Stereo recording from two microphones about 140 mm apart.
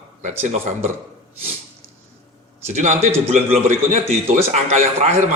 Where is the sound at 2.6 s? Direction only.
60° right (ahead or behind).